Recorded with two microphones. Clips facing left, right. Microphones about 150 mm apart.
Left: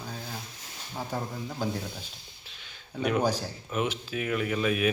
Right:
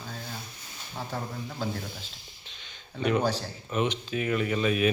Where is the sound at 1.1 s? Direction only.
15° left (ahead or behind).